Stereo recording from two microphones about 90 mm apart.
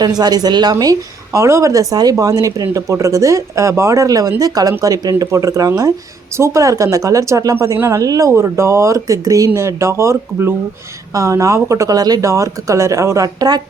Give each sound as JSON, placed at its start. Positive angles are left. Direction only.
{"t": 0.0, "sound": "a woman's voice", "side_deg": -50}